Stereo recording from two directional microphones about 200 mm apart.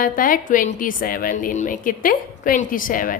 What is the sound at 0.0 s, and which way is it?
A woman's voice, 45° left (ahead or behind).